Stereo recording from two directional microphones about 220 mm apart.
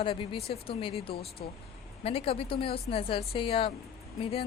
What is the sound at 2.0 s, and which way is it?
Speech, 25° left (ahead or behind).